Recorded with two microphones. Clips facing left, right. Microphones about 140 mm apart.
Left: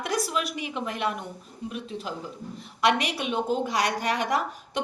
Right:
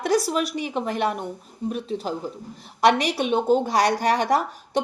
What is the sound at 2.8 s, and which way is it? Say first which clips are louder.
A woman's voice: right 5 dB; 35° right (ahead or behind).